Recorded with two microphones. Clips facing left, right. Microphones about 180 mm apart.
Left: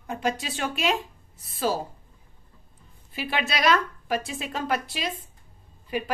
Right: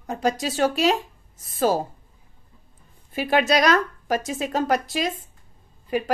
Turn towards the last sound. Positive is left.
turn(degrees=-45)  # may be behind; listen again after turning